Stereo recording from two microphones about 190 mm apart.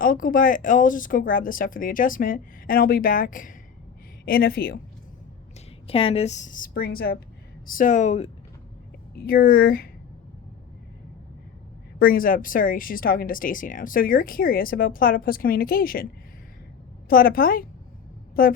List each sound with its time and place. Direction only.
0.0 s speech: 45° left (ahead or behind)
5.9 s speech: 30° left (ahead or behind)
9.1 s speech: 50° left (ahead or behind)
11.9 s speech: 50° left (ahead or behind)
17.1 s speech: 50° left (ahead or behind)